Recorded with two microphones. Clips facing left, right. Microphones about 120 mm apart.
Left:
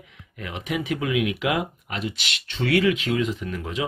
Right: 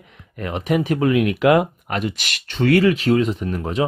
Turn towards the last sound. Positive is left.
turn(degrees=-40)  # may be behind; listen again after turning